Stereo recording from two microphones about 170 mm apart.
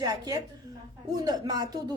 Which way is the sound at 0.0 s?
20° right (ahead or behind).